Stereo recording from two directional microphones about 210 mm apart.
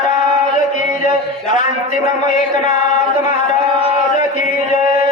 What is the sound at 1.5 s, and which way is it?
A man's voice, 35° left (ahead or behind).